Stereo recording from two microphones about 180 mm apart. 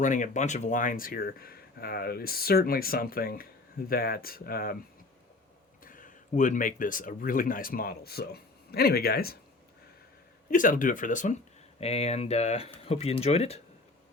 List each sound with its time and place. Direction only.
0.0 s speech: 45° left (ahead or behind)
5.8 s speech: 50° left (ahead or behind)
10.5 s speech: 50° left (ahead or behind)